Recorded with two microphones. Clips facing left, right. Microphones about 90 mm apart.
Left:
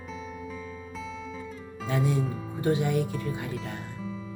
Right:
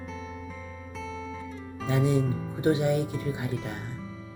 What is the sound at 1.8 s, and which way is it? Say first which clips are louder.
Speech: right 2 dB; 20° right (ahead or behind).